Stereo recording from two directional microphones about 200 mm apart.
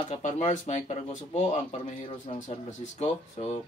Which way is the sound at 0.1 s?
35° left (ahead or behind).